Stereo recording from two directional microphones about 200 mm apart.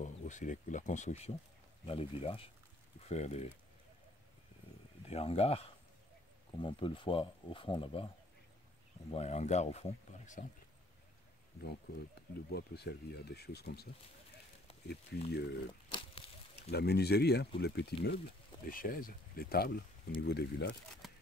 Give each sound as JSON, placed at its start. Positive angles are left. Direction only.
{"t": 0.0, "sound": "speech", "side_deg": 40}
{"t": 5.0, "sound": "speech", "side_deg": 30}
{"t": 9.1, "sound": "speech", "side_deg": 35}
{"t": 11.6, "sound": "speech", "side_deg": 50}
{"t": 14.9, "sound": "speech", "side_deg": 55}
{"t": 16.7, "sound": "speech", "side_deg": 55}
{"t": 18.7, "sound": "speech", "side_deg": 45}